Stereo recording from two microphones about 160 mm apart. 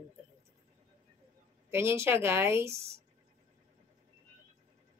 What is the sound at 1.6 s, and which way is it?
Speech, 15° right (ahead or behind).